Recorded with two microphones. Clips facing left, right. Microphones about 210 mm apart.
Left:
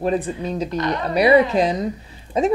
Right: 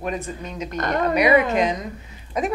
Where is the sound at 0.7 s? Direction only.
50° right (ahead or behind).